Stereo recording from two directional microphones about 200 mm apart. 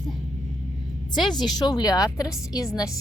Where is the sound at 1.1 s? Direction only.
20° left (ahead or behind).